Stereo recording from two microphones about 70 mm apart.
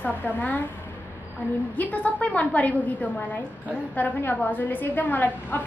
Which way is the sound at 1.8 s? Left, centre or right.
Left.